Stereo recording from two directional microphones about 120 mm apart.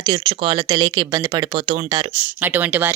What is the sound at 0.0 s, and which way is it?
Speech, 45° right (ahead or behind).